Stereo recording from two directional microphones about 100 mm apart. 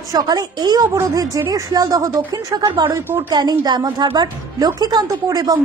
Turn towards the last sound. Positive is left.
turn(degrees=-40)  # may be behind; listen again after turning